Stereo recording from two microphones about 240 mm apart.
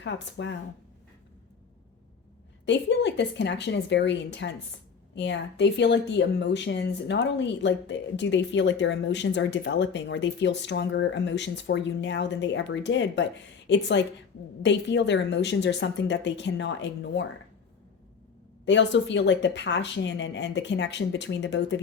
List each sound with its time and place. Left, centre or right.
0.0 s speech: left
2.6 s speech: left
18.6 s speech: left